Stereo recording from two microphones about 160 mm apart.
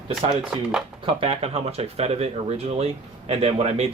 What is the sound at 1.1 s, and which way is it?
Speech, 35° right (ahead or behind).